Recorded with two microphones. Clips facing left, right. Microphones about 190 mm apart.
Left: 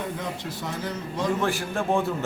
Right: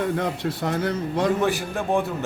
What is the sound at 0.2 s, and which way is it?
Speech, 60° right (ahead or behind).